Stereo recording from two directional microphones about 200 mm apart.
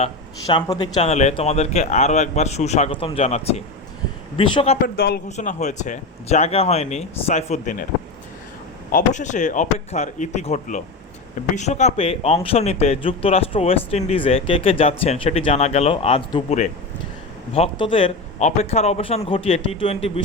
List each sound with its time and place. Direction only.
0.4 s a man's voice: 20° left (ahead or behind)
1.1 s a man's voice: 35° left (ahead or behind)
4.9 s speech: 50° left (ahead or behind)
8.9 s a man's voice: 40° left (ahead or behind)